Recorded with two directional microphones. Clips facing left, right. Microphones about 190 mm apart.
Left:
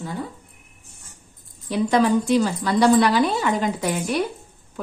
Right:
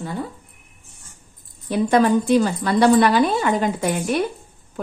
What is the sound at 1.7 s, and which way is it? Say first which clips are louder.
A woman's voice: right 2 dB; 50° right (ahead or behind).